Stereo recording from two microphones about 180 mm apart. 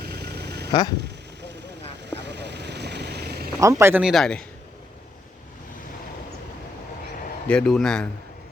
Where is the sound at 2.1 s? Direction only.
70° right (ahead or behind).